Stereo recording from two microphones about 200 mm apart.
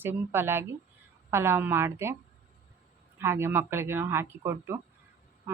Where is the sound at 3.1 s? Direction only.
10° right (ahead or behind).